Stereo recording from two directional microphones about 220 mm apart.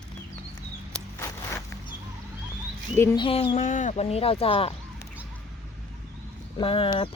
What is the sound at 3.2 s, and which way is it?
Speech, 25° left (ahead or behind).